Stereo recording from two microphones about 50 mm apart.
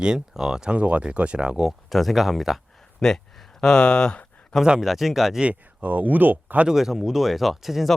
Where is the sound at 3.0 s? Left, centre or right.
Centre.